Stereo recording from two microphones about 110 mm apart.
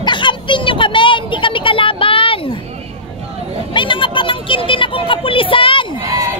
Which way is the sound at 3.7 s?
50° left (ahead or behind).